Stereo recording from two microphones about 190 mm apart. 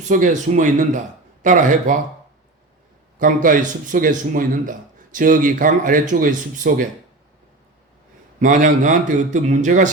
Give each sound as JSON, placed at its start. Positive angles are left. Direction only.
{"t": 0.1, "sound": "a man's voice", "side_deg": -40}
{"t": 3.2, "sound": "a man's voice", "side_deg": -45}
{"t": 8.4, "sound": "a man's voice", "side_deg": -45}